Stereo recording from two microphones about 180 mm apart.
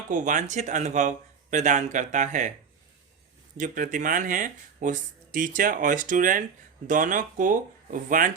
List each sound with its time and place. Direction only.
0.1 s speech: 45° right (ahead or behind)
3.6 s speech: 45° right (ahead or behind)